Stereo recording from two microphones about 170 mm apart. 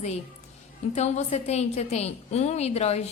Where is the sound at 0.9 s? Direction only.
40° left (ahead or behind).